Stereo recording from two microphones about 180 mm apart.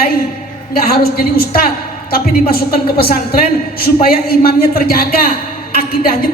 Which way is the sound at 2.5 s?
55° left (ahead or behind).